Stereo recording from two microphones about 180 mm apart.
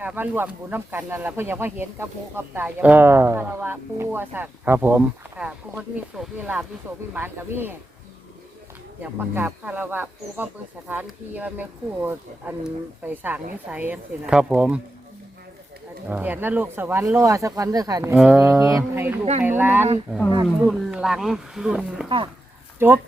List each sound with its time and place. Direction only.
0.0 s speech: 10° right (ahead or behind)
9.0 s speech: 10° right (ahead or behind)
16.0 s speech: 10° right (ahead or behind)